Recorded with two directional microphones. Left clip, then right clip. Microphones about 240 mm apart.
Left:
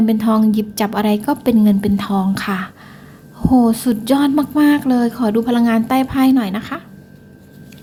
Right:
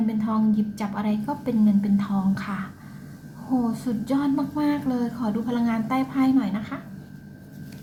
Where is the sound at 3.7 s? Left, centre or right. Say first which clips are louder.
Left 11 dB; left.